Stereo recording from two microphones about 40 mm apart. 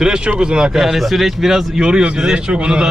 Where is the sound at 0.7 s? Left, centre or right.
Centre.